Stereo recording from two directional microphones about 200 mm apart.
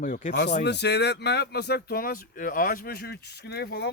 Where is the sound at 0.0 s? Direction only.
40° left (ahead or behind).